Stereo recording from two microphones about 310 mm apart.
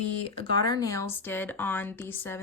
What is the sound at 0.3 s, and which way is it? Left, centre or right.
Speech, centre.